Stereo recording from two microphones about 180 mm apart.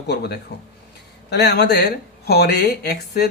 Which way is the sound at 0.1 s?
65° left (ahead or behind).